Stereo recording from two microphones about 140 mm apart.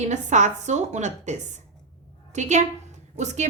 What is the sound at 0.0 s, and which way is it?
A woman's voice, 55° right (ahead or behind).